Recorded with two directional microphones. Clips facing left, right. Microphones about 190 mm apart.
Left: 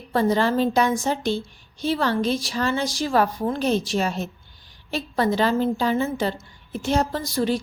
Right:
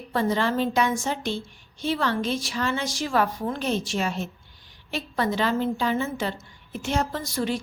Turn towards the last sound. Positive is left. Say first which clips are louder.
# left 4 dB
turn(degrees=35)  # may be behind; listen again after turning